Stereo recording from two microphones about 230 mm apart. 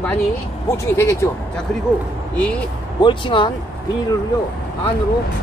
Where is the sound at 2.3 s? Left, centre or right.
Centre.